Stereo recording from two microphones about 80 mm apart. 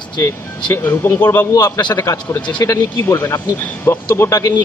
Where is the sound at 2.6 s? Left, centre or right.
Left.